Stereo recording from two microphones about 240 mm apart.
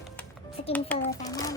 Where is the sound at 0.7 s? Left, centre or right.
Centre.